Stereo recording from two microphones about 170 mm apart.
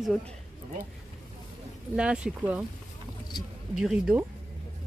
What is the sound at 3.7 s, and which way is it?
Speech, 5° right (ahead or behind).